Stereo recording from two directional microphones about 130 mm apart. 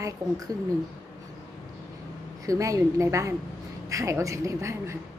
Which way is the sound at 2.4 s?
25° right (ahead or behind).